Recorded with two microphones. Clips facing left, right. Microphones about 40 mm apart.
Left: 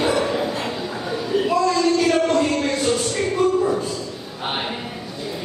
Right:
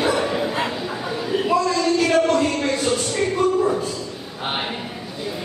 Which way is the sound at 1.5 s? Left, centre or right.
Centre.